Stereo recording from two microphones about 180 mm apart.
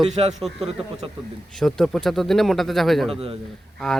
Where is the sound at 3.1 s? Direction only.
30° right (ahead or behind).